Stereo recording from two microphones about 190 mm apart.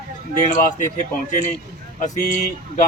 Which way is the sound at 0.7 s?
45° left (ahead or behind).